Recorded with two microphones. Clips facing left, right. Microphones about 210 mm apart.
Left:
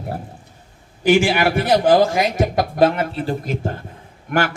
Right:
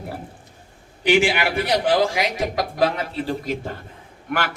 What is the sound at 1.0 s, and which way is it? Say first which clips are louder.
A man's voice: left 3 dB; 45° left (ahead or behind).